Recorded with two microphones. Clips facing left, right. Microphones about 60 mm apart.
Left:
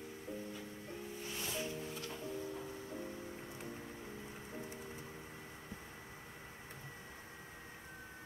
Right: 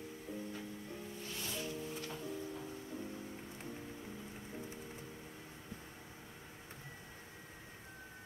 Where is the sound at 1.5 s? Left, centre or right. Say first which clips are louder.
Even; left.